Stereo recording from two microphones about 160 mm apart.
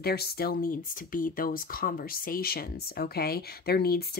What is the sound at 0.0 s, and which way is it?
Speech, 75° left (ahead or behind).